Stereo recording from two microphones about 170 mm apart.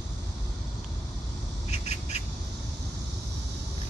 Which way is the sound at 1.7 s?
40° left (ahead or behind).